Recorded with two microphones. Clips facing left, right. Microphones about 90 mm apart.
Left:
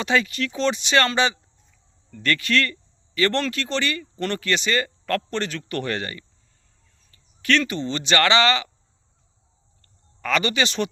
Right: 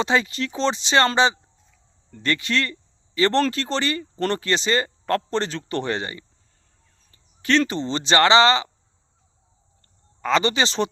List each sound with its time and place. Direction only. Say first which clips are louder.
0.0 s speech: right 1 dB; 25° right (ahead or behind)
7.1 s a sound: right 1 dB; 30° right (ahead or behind)
7.6 s speech: right 2 dB; 30° right (ahead or behind)
10.2 s speech: right 2 dB; 25° right (ahead or behind)